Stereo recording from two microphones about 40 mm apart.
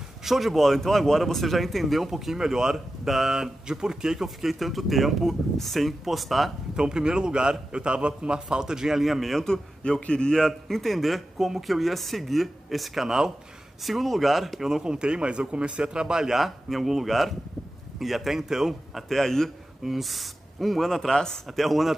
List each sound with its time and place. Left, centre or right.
0.2 s speech: centre
6.8 s a man's voice: centre
9.4 s a man's voice: centre
10.3 s speech: centre
14.8 s a man's voice: right
16.3 s a man's voice: centre
19.0 s a man's voice: centre
19.8 s speech: centre